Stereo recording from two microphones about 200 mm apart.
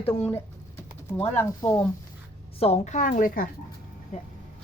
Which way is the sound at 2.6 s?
30° left (ahead or behind).